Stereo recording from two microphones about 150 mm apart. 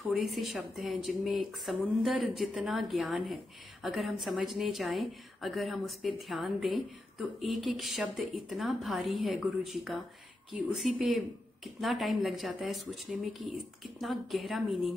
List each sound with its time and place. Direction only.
0.0 s a woman's voice: centre (ahead or behind)